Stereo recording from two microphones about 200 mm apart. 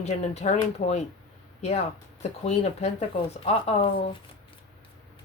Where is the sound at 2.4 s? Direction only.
30° left (ahead or behind).